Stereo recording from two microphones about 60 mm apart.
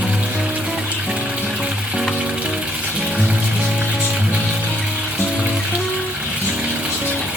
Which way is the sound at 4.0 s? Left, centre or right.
Centre.